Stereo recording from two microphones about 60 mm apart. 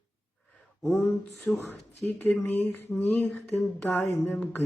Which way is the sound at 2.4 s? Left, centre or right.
Left.